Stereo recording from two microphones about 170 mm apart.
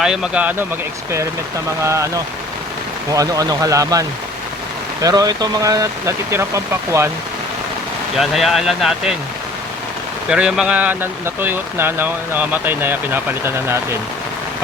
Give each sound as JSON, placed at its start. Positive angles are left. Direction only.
{"t": 0.0, "sound": "speech", "side_deg": -5}
{"t": 1.8, "sound": "speech", "side_deg": -15}
{"t": 5.0, "sound": "speech", "side_deg": -20}
{"t": 8.2, "sound": "speech", "side_deg": 0}
{"t": 10.2, "sound": "speech", "side_deg": -5}